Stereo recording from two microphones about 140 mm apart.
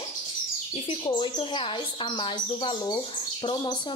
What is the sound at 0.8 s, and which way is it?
A woman's voice, 35° left (ahead or behind).